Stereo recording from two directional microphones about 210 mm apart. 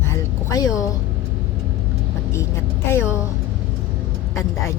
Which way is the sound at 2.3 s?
15° left (ahead or behind).